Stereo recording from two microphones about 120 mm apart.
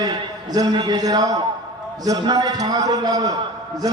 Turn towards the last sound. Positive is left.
turn(degrees=-35)  # may be behind; listen again after turning